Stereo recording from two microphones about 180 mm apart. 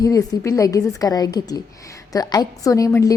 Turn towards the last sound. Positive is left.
turn(degrees=20)  # may be behind; listen again after turning